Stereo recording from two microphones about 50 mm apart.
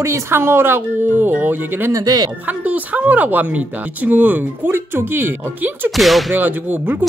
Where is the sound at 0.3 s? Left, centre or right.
Right.